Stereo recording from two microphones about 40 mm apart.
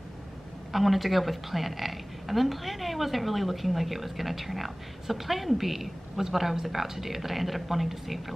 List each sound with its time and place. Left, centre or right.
0.7 s a woman's voice: centre